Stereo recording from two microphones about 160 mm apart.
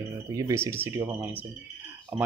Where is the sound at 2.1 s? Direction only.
10° right (ahead or behind).